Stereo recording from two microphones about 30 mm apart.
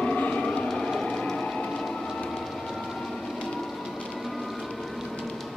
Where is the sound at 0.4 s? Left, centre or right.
Left.